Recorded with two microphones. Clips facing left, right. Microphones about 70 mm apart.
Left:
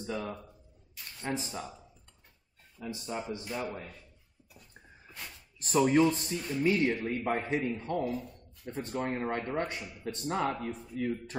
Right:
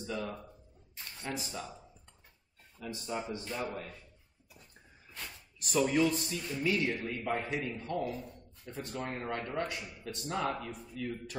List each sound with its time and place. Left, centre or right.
0.1 s speech: centre
0.9 s a sound: right
1.2 s speech: left
2.8 s speech: centre
5.2 s speech: left